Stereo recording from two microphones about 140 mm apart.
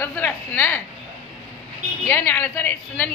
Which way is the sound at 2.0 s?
15° left (ahead or behind).